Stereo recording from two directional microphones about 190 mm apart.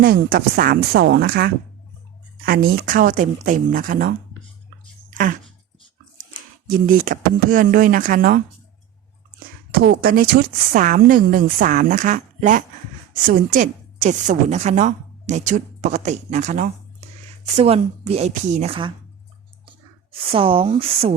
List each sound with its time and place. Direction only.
0.0 s speech: 50° right (ahead or behind)
5.1 s speech: 45° right (ahead or behind)
6.7 s speech: 45° right (ahead or behind)
9.7 s a woman's voice: 55° right (ahead or behind); by 18.9 s 30° right (ahead or behind)
20.3 s speech: 30° right (ahead or behind)